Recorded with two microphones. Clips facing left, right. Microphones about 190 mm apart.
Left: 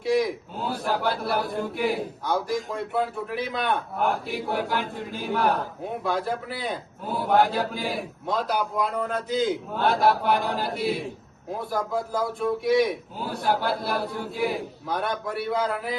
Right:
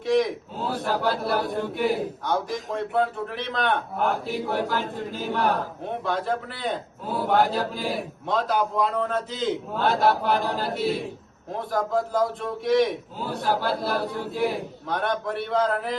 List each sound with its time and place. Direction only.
0.0 s a man's voice: centre (ahead or behind)